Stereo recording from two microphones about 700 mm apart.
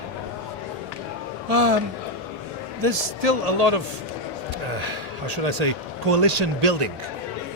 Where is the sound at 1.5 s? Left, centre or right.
Right.